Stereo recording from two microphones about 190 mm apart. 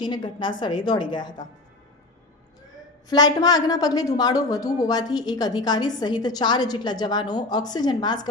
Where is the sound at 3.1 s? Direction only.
20° left (ahead or behind).